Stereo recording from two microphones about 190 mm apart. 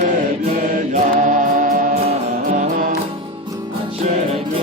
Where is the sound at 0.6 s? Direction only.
45° right (ahead or behind).